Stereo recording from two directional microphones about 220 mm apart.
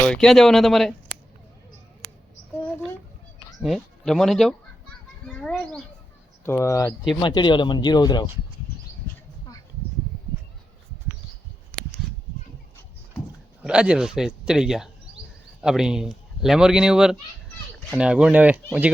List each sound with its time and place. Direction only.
0.0 s speech: 5° left (ahead or behind)
3.6 s speech: centre (ahead or behind)
5.3 s a sound: 5° left (ahead or behind)
6.4 s speech: 10° left (ahead or behind)
13.6 s speech: 5° right (ahead or behind)